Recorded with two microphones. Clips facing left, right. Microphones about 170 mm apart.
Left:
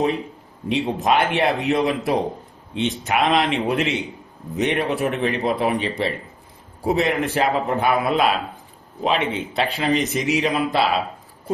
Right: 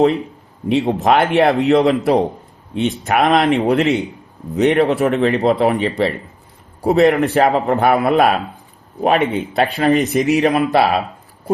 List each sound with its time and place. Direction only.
0.7 s a man's voice: 60° right (ahead or behind)
2.7 s a man's voice: 50° right (ahead or behind)